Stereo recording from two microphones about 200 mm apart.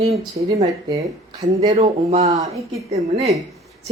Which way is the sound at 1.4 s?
30° right (ahead or behind).